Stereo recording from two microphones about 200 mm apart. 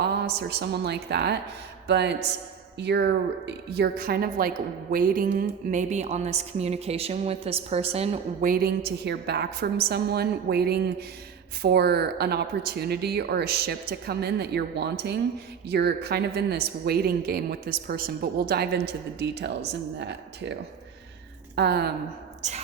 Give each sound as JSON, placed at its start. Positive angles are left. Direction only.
{"t": 0.0, "sound": "a woman's voice", "side_deg": -55}
{"t": 8.4, "sound": "a woman's voice", "side_deg": -50}
{"t": 22.4, "sound": "a woman's voice", "side_deg": -35}